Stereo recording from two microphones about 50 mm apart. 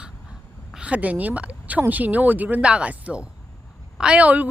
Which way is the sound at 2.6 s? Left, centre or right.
Right.